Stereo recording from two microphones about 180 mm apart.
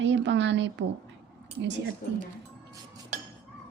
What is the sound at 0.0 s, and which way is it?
Speech, 80° right.